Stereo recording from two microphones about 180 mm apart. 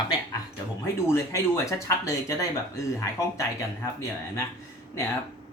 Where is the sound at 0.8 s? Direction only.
15° left (ahead or behind).